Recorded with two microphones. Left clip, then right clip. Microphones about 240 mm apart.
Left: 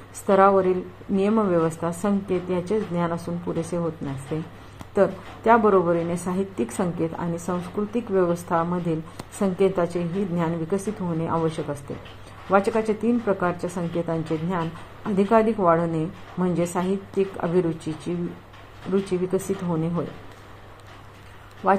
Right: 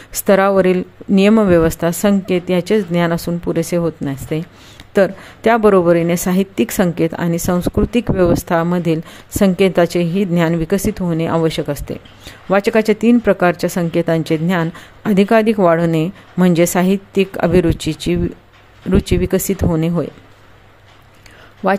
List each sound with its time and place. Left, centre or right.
0.3 s speech: right
19.3 s speech: right